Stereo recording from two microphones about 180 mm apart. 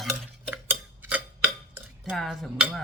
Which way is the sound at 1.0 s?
10° right (ahead or behind).